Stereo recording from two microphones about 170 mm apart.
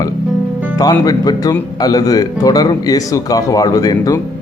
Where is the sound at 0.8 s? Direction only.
20° left (ahead or behind).